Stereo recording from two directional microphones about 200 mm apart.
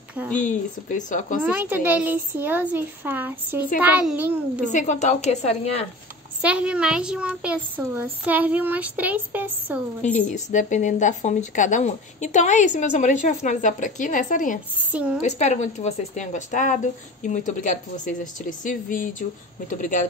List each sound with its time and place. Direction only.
0.4 s speech: 40° left (ahead or behind)
1.4 s a child's voice: 10° right (ahead or behind)
4.7 s speech: 35° left (ahead or behind)
6.4 s a child's voice: 5° right (ahead or behind)
10.2 s speech: 40° left (ahead or behind)
14.9 s a woman's voice: 5° right (ahead or behind)
15.2 s speech: 35° left (ahead or behind)